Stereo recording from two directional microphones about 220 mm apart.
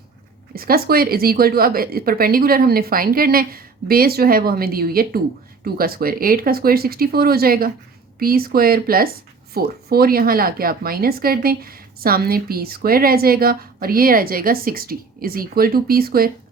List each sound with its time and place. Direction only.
0.5 s a woman's voice: 45° right (ahead or behind)